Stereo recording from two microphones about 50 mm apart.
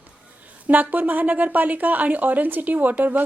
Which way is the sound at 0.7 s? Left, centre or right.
Right.